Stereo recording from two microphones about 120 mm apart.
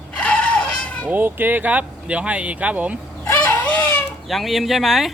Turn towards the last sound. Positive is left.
turn(degrees=0)  # may be behind; listen again after turning